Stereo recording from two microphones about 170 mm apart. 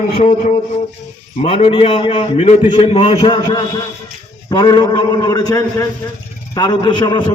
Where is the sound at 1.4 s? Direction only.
40° left (ahead or behind).